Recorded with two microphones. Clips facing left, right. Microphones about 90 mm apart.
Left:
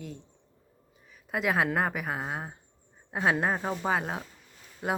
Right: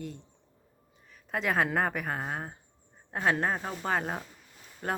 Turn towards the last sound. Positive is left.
turn(degrees=10)  # may be behind; listen again after turning